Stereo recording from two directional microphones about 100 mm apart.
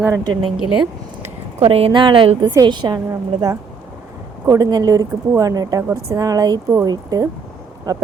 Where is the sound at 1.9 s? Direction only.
50° right (ahead or behind).